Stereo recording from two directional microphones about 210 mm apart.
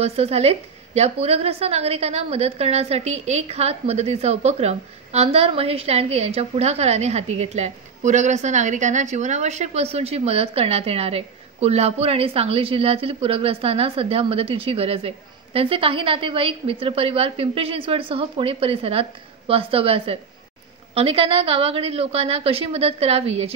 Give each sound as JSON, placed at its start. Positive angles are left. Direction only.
{"t": 0.0, "sound": "a woman's voice", "side_deg": -30}